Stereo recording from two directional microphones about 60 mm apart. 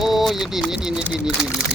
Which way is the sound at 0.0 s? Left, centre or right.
Centre.